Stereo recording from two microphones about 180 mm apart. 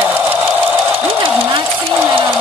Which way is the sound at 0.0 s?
10° right (ahead or behind).